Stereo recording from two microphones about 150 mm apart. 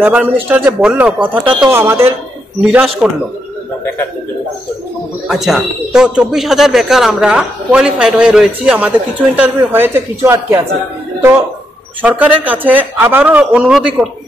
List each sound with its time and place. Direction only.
0.0 s a man's voice: 10° right (ahead or behind)
5.3 s a man's voice: centre (ahead or behind)